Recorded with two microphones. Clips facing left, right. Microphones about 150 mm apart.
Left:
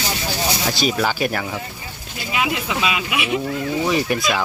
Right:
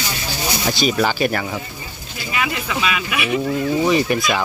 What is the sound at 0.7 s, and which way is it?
Speech, centre (ahead or behind).